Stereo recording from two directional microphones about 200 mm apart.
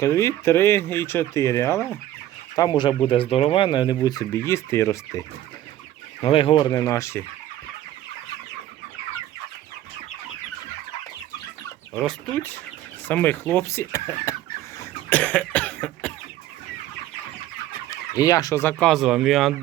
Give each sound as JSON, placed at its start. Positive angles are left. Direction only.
{"t": 0.0, "sound": "speech", "side_deg": 15}
{"t": 6.2, "sound": "speech", "side_deg": 25}
{"t": 13.1, "sound": "speech", "side_deg": 10}
{"t": 14.8, "sound": "cough", "side_deg": 5}
{"t": 17.9, "sound": "speech", "side_deg": 15}